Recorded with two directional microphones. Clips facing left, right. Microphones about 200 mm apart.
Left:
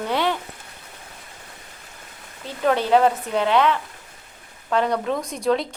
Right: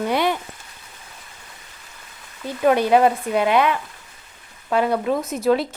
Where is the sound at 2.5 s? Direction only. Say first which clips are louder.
Right 2 dB; 10° right (ahead or behind).